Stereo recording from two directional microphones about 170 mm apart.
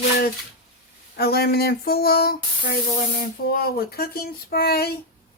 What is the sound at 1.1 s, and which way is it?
Speech, 65° left (ahead or behind).